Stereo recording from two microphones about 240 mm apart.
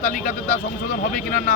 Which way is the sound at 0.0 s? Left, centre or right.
Left.